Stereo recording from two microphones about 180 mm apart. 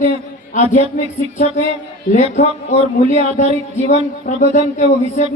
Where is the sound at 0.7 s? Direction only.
40° left (ahead or behind).